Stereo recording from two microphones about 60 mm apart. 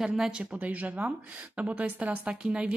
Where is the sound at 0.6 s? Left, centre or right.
Right.